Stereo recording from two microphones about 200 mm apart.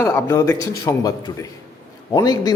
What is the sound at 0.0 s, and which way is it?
A man's voice, 15° left (ahead or behind).